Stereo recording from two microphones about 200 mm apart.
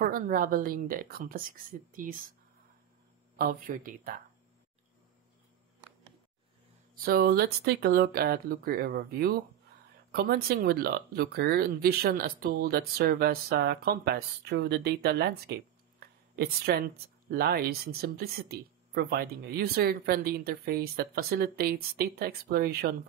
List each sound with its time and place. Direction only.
0.0 s speech: 45° right (ahead or behind)
3.3 s speech: 45° right (ahead or behind)
7.0 s speech: 50° right (ahead or behind)